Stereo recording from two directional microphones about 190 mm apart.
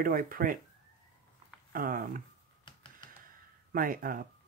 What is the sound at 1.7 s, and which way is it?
Speech, 50° right (ahead or behind).